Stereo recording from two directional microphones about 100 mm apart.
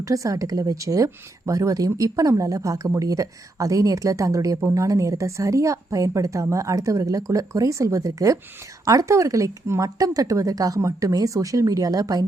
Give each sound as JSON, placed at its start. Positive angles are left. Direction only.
{"t": 0.0, "sound": "speech", "side_deg": -35}